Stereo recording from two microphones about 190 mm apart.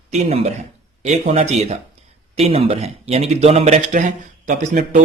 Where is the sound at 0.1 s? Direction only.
35° right (ahead or behind).